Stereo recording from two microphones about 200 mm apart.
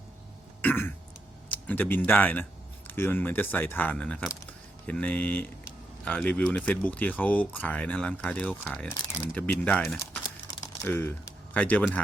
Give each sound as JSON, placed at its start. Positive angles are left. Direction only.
{"t": 0.6, "sound": "burping", "side_deg": 10}
{"t": 1.5, "sound": "speech", "side_deg": 10}
{"t": 10.2, "sound": "a sound", "side_deg": 15}